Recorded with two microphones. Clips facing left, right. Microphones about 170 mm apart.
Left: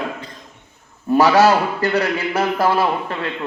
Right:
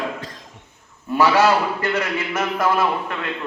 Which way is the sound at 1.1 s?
40° left (ahead or behind).